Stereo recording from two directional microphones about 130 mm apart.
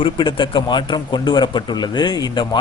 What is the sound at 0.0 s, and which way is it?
Speech, 40° left (ahead or behind).